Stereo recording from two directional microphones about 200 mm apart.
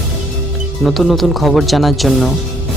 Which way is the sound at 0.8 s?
Centre (ahead or behind).